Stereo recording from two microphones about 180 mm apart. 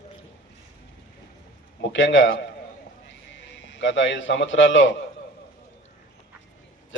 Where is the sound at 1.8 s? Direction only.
90° left.